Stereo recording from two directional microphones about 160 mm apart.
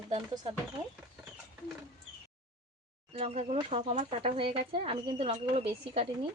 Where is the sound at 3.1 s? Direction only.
40° right (ahead or behind).